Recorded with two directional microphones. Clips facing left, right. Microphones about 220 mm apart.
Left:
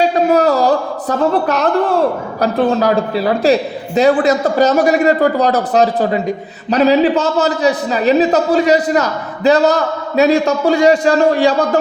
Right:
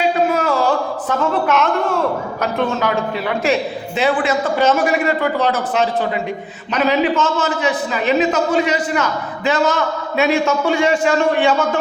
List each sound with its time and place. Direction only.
0.3 s speech: 40° left (ahead or behind)